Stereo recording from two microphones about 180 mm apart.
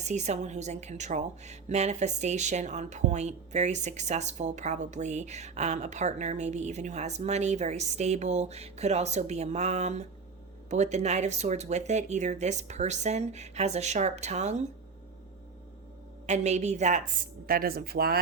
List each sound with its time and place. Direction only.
0.0 s speech: 40° right (ahead or behind)
16.2 s speech: 40° right (ahead or behind)
17.4 s speech: 55° right (ahead or behind)